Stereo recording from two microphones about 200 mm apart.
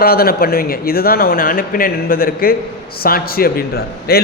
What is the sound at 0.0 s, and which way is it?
A man's voice, 50° left (ahead or behind).